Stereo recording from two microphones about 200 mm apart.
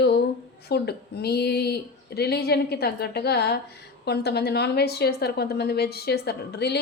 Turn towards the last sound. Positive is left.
turn(degrees=55)  # may be behind; listen again after turning